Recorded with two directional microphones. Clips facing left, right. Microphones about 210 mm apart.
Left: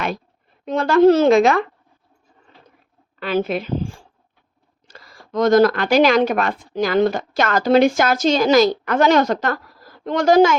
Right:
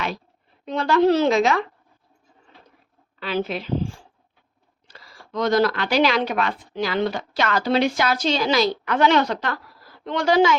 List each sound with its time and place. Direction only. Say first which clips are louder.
0.6 s speech: left 5 dB; 50° left (ahead or behind)
3.2 s speech: left 5 dB; 50° left (ahead or behind)
4.9 s speech: left 4 dB; 45° left (ahead or behind)